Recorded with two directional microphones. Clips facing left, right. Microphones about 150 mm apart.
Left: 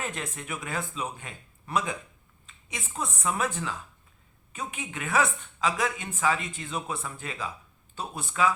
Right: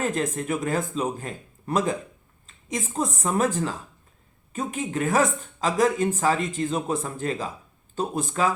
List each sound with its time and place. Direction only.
0.0 s speech: 40° right (ahead or behind)